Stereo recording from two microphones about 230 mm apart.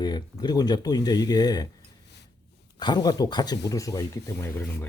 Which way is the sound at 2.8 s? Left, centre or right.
Centre.